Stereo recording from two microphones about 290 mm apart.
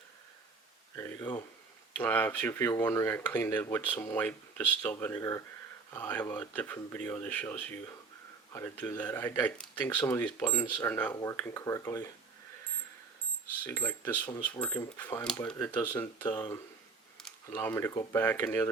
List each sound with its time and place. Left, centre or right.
0.9 s speech: centre
13.7 s speech: centre